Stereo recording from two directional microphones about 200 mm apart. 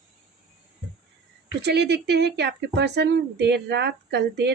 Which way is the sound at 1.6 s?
55° right (ahead or behind).